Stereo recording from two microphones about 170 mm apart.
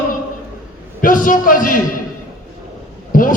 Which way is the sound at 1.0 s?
55° left (ahead or behind).